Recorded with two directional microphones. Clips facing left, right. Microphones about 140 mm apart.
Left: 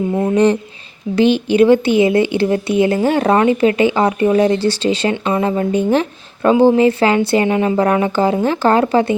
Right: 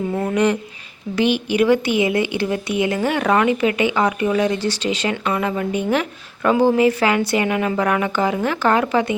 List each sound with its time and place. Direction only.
0.3 s speech: 30° left (ahead or behind)